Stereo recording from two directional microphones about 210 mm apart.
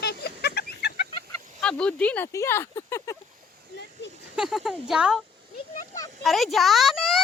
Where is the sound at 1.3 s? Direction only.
5° left (ahead or behind).